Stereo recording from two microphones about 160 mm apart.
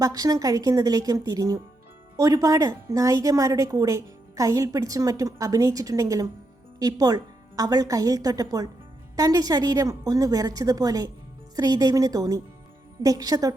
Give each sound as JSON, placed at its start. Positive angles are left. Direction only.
{"t": 0.0, "sound": "a woman's voice", "side_deg": -25}